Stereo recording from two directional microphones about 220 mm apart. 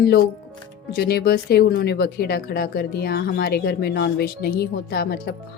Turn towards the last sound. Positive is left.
turn(degrees=45)  # may be behind; listen again after turning